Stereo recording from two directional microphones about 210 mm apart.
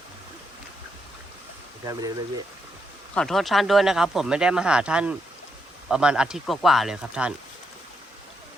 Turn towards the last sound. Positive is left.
turn(degrees=-5)  # may be behind; listen again after turning